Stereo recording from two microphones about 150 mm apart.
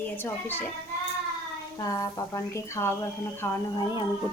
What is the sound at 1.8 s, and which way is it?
Speech, 20° left (ahead or behind).